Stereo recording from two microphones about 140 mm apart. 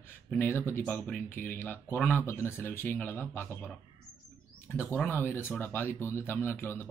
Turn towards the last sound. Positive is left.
turn(degrees=15)  # may be behind; listen again after turning